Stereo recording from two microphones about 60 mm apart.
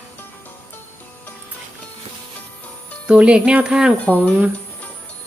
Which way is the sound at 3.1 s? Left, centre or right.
Centre.